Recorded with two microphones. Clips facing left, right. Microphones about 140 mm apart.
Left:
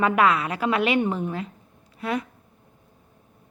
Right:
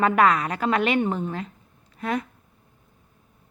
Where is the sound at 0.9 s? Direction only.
10° left (ahead or behind).